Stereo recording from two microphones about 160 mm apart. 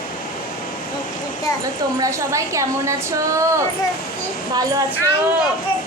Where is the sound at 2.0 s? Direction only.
20° right (ahead or behind).